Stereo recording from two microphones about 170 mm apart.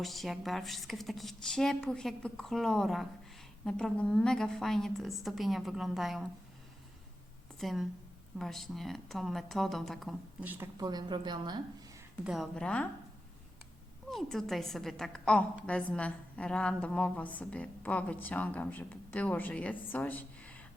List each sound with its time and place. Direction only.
0.0 s a woman's voice: centre (ahead or behind)
7.6 s a woman's voice: centre (ahead or behind)
10.4 s speech: 10° right (ahead or behind)
10.8 s a woman's voice: 25° right (ahead or behind)
12.2 s a woman's voice: centre (ahead or behind)
14.1 s a woman's voice: centre (ahead or behind)